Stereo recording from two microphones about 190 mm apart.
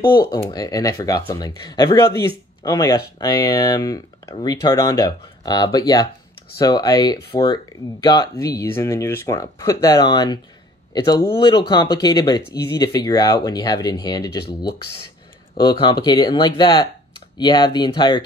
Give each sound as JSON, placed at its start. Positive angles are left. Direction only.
{"t": 0.0, "sound": "speech", "side_deg": 50}
{"t": 0.4, "sound": "speech", "side_deg": 20}
{"t": 15.5, "sound": "speech", "side_deg": 20}